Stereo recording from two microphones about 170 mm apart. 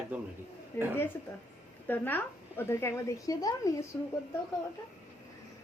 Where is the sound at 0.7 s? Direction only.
10° left (ahead or behind).